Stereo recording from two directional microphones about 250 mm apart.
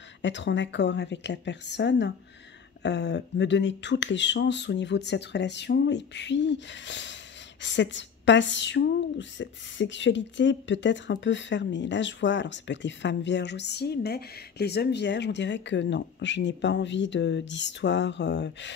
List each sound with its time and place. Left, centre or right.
0.2 s speech: left